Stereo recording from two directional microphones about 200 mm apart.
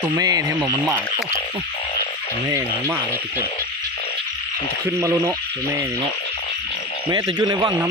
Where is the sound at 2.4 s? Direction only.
15° right (ahead or behind).